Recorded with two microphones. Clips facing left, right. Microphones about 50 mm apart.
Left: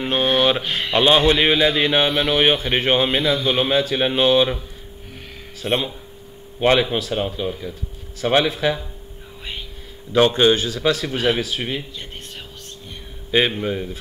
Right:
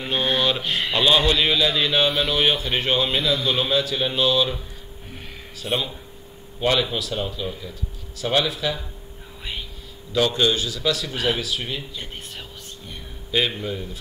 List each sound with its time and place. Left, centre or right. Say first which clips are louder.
0.0 s mantra: left 4 dB; left
0.9 s a man's voice: left 4 dB; left
5.6 s a man's voice: left 4 dB; left
9.4 s whispering: even; centre
10.1 s a man's voice: left 5 dB; left
11.9 s speech: even; centre
12.4 s a sound: left 1 dB; centre
13.6 s a man's voice: left 5 dB; left